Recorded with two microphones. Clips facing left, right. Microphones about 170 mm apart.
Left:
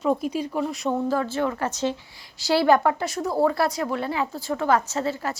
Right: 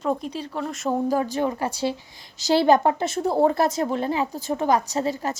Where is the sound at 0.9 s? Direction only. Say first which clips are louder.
Right 3 dB; 15° right (ahead or behind).